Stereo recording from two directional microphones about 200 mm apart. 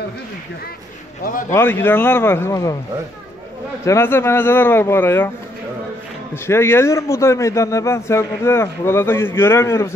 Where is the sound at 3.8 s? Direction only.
15° left (ahead or behind).